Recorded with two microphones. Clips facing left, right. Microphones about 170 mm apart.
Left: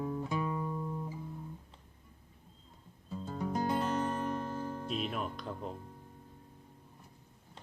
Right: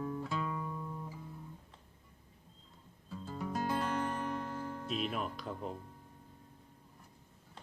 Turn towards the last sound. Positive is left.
turn(degrees=0)  # may be behind; listen again after turning